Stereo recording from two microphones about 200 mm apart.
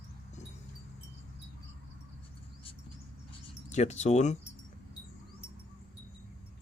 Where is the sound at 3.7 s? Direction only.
35° left (ahead or behind).